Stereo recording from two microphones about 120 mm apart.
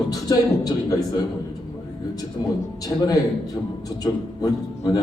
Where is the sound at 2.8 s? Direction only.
30° left (ahead or behind).